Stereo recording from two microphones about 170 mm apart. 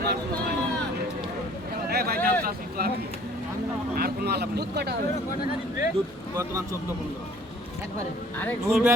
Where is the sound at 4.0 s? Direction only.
65° right (ahead or behind).